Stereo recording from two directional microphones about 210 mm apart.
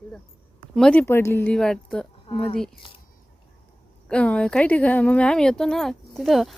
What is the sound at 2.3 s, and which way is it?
Speech, 25° left (ahead or behind).